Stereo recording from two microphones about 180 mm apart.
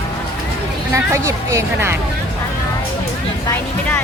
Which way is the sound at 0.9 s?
15° right (ahead or behind).